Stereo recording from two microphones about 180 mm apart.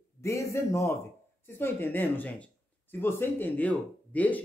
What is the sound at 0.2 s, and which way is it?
Speech, 15° left (ahead or behind).